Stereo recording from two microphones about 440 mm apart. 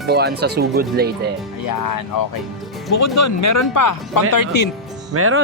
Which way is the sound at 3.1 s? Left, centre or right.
Left.